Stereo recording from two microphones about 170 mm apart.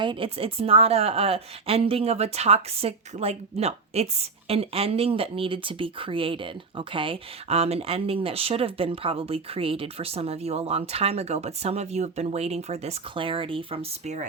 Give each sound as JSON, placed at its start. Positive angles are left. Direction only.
{"t": 0.0, "sound": "a woman's voice", "side_deg": -30}